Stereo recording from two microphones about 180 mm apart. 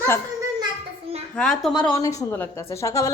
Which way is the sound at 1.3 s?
5° left (ahead or behind).